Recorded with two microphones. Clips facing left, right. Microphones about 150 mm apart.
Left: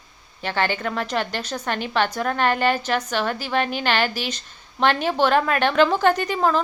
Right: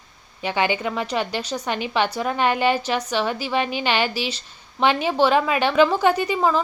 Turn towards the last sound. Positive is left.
turn(degrees=-5)  # may be behind; listen again after turning